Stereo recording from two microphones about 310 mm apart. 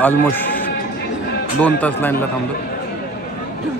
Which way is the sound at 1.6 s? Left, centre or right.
Centre.